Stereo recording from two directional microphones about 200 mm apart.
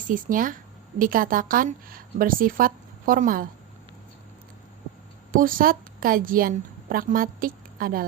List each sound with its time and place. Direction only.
0.1 s a woman's voice: 40° right (ahead or behind)
5.3 s a woman's voice: 45° right (ahead or behind)